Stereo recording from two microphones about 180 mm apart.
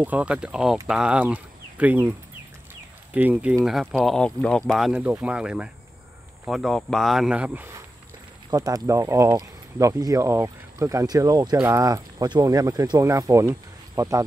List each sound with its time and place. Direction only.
0.0 s speech: 5° right (ahead or behind)
3.5 s speech: centre (ahead or behind); by 14.2 s 20° right (ahead or behind)